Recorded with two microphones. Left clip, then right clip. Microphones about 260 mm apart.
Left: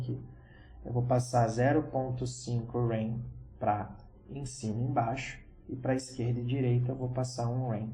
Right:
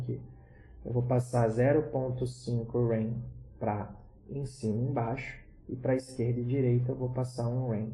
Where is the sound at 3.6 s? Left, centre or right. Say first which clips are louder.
Left 3 dB; left.